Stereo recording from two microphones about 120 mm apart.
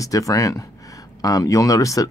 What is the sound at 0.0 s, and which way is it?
Speech, 30° left (ahead or behind).